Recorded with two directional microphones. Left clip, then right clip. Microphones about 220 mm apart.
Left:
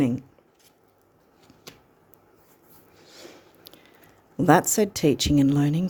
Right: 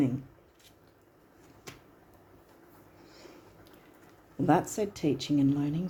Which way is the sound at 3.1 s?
45° left (ahead or behind).